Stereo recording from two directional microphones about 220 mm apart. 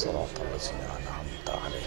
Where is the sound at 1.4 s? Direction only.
25° right (ahead or behind).